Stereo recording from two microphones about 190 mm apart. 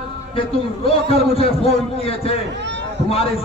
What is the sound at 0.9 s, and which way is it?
A man's voice, 30° left (ahead or behind).